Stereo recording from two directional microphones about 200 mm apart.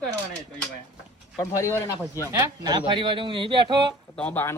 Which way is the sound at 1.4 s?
15° left (ahead or behind).